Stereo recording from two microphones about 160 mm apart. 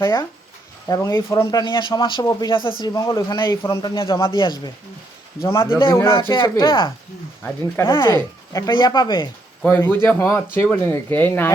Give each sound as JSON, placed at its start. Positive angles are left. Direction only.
{"t": 0.0, "sound": "speech", "side_deg": 25}
{"t": 4.1, "sound": "speech", "side_deg": 20}
{"t": 5.5, "sound": "speech", "side_deg": 15}
{"t": 6.3, "sound": "speech", "side_deg": 30}
{"t": 7.9, "sound": "speech", "side_deg": 15}
{"t": 9.6, "sound": "speech", "side_deg": 10}